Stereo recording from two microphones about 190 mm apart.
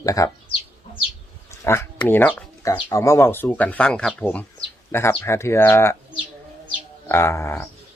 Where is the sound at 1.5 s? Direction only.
15° left (ahead or behind).